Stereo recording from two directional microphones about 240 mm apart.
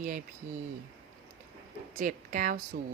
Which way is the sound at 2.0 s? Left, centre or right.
Right.